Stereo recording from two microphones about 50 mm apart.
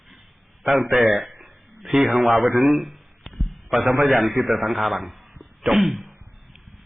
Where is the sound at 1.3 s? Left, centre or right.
Centre.